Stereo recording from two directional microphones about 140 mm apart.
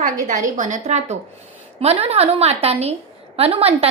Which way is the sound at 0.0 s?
65° right (ahead or behind).